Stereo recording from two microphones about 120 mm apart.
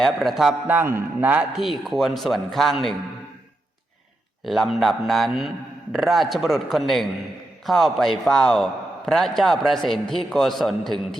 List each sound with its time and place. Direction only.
0.0 s a man's voice: centre (ahead or behind)
0.7 s a man's voice: 20° right (ahead or behind)
1.5 s a man's voice: centre (ahead or behind)
4.4 s a man's voice: centre (ahead or behind)